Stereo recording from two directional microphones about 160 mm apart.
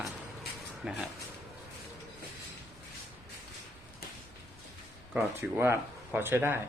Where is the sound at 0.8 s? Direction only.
5° right (ahead or behind).